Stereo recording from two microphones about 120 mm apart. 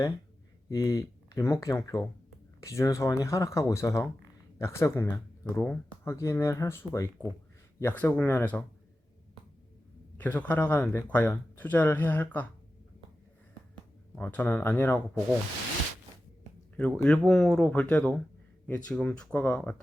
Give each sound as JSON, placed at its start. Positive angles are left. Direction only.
{"t": 0.7, "sound": "speech", "side_deg": 30}
{"t": 10.2, "sound": "speech", "side_deg": 15}
{"t": 14.2, "sound": "speech", "side_deg": 15}
{"t": 16.7, "sound": "speech", "side_deg": 10}